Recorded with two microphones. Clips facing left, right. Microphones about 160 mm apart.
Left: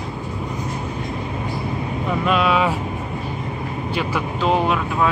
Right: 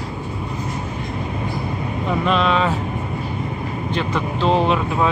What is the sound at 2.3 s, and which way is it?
Speech, 10° left (ahead or behind).